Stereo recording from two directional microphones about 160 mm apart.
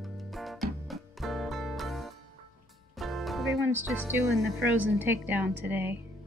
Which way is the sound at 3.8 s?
10° right (ahead or behind).